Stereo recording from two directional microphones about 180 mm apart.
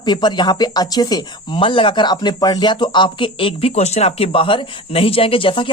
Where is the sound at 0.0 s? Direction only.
25° left (ahead or behind).